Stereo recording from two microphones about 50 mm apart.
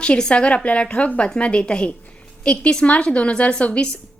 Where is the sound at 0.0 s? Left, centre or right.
Centre.